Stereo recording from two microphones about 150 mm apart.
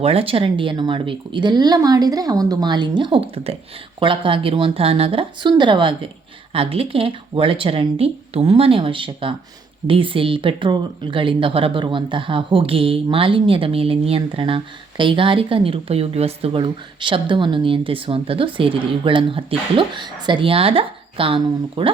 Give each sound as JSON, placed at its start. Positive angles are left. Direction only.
{"t": 0.0, "sound": "speech", "side_deg": -40}